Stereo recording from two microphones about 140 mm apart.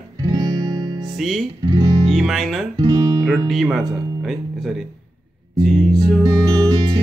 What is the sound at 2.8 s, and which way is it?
Guitar, 30° right (ahead or behind).